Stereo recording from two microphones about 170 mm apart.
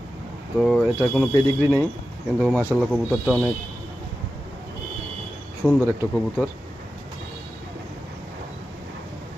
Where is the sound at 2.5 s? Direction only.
10° left (ahead or behind).